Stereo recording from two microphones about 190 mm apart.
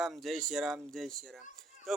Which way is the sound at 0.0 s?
Centre (ahead or behind).